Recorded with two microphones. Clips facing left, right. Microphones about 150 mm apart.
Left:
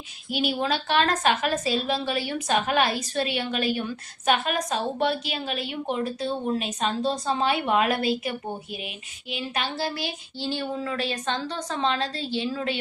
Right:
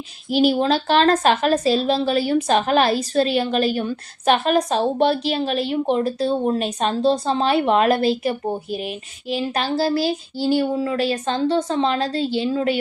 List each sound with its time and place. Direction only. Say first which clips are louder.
0.3 s a woman's voice: right 9 dB; 35° right (ahead or behind)